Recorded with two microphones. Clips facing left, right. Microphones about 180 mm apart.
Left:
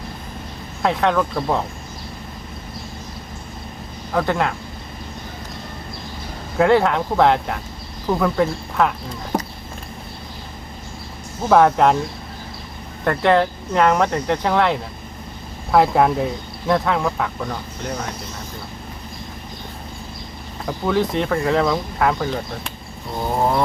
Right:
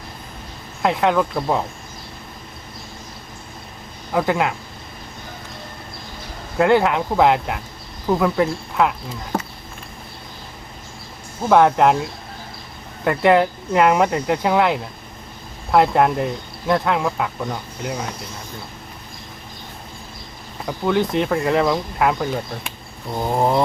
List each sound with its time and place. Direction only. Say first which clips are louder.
0.8 s speech: right 1 dB; centre (ahead or behind)
4.1 s speech: right 1 dB; 5° right (ahead or behind)
6.6 s speech: even; centre (ahead or behind)
11.4 s speech: even; centre (ahead or behind)
13.1 s speech: right 1 dB; 5° right (ahead or behind)
20.7 s speech: even; centre (ahead or behind)
23.4 s a sound: right 1 dB; 20° right (ahead or behind)